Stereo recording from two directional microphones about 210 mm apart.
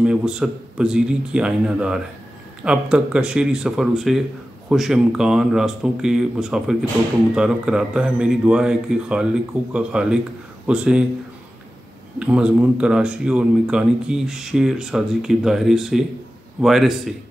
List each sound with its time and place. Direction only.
0.0 s speech: 5° right (ahead or behind)
12.2 s speech: 5° right (ahead or behind)